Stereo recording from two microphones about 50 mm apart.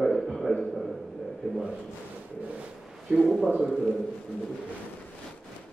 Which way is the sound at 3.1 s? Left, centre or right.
Centre.